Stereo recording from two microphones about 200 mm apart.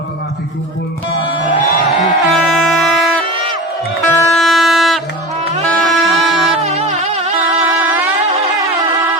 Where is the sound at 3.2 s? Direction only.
25° right (ahead or behind).